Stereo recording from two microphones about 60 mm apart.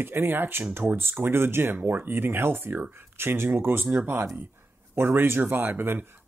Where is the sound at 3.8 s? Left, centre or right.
Right.